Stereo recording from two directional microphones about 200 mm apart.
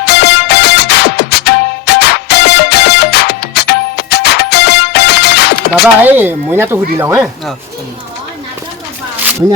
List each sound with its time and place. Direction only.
0.0 s music: 55° left (ahead or behind)
6.0 s speech: 10° right (ahead or behind)